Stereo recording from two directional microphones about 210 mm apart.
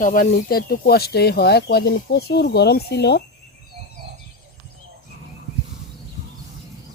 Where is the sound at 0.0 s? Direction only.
40° left (ahead or behind).